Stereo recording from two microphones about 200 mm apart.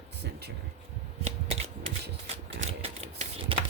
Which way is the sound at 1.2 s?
30° right (ahead or behind).